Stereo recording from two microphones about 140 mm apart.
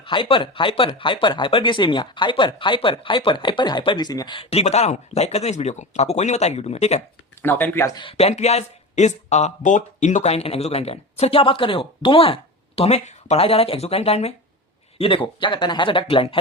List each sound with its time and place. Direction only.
0.0 s speech: 40° left (ahead or behind)
7.4 s speech: 15° left (ahead or behind)
8.1 s speech: 55° left (ahead or behind)